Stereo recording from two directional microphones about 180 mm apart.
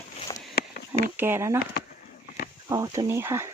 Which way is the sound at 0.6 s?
60° left (ahead or behind).